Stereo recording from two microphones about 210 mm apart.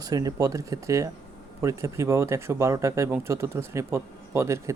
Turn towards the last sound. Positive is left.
turn(degrees=-15)  # may be behind; listen again after turning